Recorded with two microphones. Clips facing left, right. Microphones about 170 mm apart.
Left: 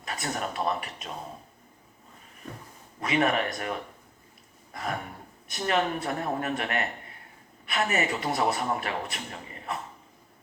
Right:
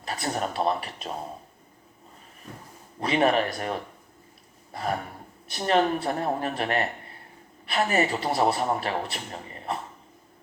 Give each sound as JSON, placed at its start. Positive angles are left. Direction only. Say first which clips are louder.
{"t": 0.0, "sound": "speech", "louder": "right 3 dB", "side_deg": -30}
{"t": 3.0, "sound": "speech", "louder": "right 3 dB", "side_deg": -30}